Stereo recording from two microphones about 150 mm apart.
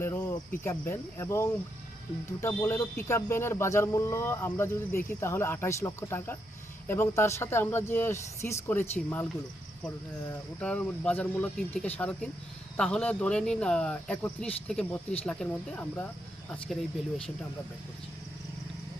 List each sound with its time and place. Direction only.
0.0 s speech: 15° left (ahead or behind)
10.6 s speech: 10° left (ahead or behind)